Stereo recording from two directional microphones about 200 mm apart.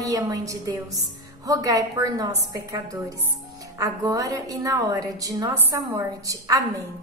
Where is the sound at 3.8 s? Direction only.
15° right (ahead or behind).